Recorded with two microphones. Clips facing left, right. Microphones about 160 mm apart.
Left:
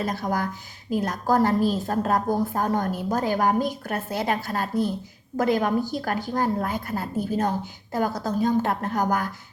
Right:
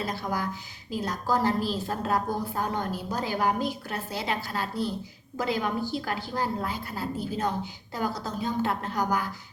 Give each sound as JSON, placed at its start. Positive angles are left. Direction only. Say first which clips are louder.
{"t": 0.0, "sound": "a woman's voice", "louder": "left 4 dB", "side_deg": 45}